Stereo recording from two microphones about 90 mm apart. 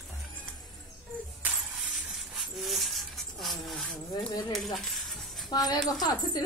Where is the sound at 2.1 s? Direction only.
Centre (ahead or behind).